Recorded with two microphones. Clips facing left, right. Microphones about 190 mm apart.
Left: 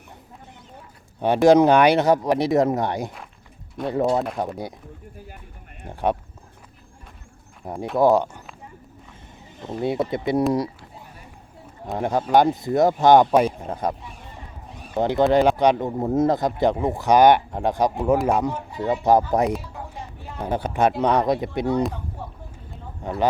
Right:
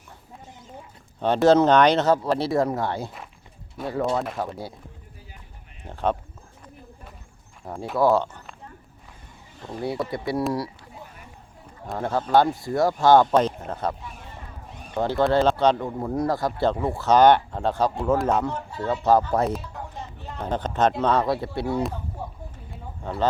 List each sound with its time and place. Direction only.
1.2 s speech: 15° left (ahead or behind)
5.9 s speech: 15° left (ahead or behind)
7.9 s speech: 15° left (ahead or behind)
9.6 s speech: 20° left (ahead or behind)
11.9 s speech: 15° left (ahead or behind)
14.9 s speech: 20° left (ahead or behind)
19.5 s speech: 5° left (ahead or behind)